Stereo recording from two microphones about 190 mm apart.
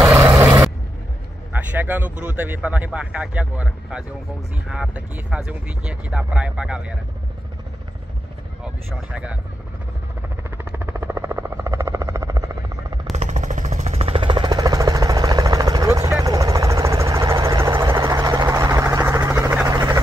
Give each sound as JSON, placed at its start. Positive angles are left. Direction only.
{"t": 0.2, "sound": "vehicle", "side_deg": -15}
{"t": 1.5, "sound": "speech", "side_deg": -10}
{"t": 8.6, "sound": "speech", "side_deg": -5}
{"t": 10.8, "sound": "a sound", "side_deg": -10}
{"t": 13.1, "sound": "jackhammer", "side_deg": -40}